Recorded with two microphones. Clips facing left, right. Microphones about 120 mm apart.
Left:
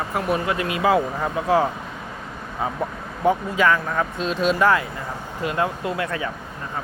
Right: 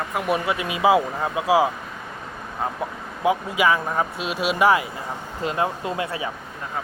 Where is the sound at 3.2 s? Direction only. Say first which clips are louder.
Left 1 dB; 10° right (ahead or behind).